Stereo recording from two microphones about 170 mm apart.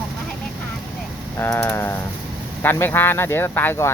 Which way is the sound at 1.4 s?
15° left (ahead or behind).